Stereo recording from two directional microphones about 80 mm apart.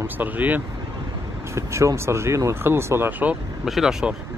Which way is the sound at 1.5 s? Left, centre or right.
Right.